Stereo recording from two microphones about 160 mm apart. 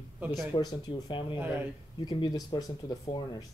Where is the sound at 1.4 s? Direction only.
10° right (ahead or behind).